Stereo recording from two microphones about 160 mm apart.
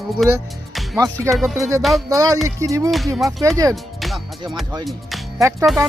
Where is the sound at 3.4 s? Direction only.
20° right (ahead or behind).